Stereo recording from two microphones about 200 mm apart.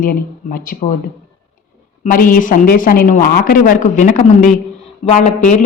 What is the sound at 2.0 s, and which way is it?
A woman's voice, 45° left (ahead or behind).